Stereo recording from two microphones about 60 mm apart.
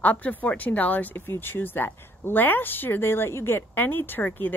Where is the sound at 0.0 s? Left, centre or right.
Left.